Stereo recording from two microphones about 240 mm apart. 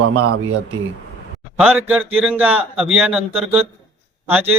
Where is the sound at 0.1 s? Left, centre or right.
Right.